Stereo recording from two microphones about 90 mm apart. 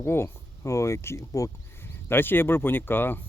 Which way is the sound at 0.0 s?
30° left (ahead or behind).